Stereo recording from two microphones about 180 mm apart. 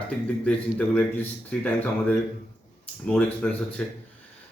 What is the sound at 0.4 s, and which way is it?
Speech, 10° left (ahead or behind).